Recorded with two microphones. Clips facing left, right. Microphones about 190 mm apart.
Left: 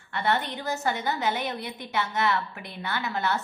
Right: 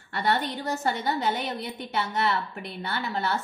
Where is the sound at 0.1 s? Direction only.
35° right (ahead or behind).